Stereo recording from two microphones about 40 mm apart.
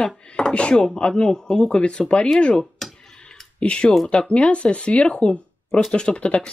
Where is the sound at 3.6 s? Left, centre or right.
Left.